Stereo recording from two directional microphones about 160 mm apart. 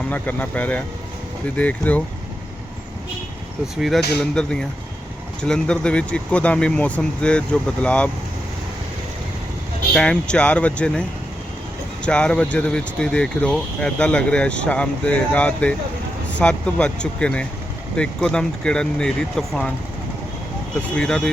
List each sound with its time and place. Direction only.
0.1 s speech: 10° left (ahead or behind)
3.8 s speech: centre (ahead or behind)
9.9 s speech: 5° left (ahead or behind)
12.0 s speech: 5° left (ahead or behind)
20.9 s speech: 5° left (ahead or behind)